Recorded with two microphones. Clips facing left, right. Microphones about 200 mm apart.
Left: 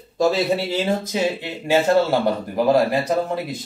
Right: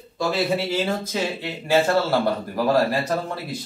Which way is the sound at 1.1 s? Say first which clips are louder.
Left 4 dB; 15° left (ahead or behind).